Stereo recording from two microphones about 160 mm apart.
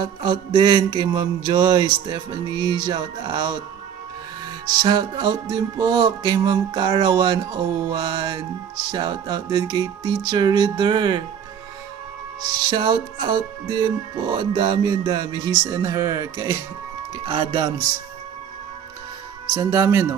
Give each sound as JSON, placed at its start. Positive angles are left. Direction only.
{"t": 0.0, "sound": "speech", "side_deg": -25}
{"t": 4.8, "sound": "speech", "side_deg": -25}
{"t": 12.6, "sound": "speech", "side_deg": -30}
{"t": 17.1, "sound": "speech", "side_deg": -30}
{"t": 19.5, "sound": "speech", "side_deg": -20}